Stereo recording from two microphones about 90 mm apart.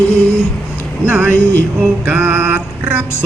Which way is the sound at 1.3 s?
20° left (ahead or behind).